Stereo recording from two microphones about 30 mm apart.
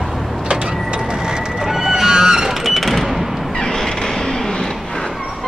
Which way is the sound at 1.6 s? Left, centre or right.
Centre.